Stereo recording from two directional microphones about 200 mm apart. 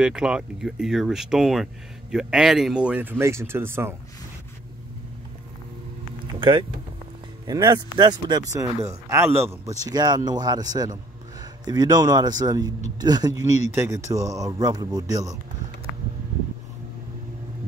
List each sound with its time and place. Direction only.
0.0 s speech: 5° right (ahead or behind)
7.4 s speech: 20° right (ahead or behind)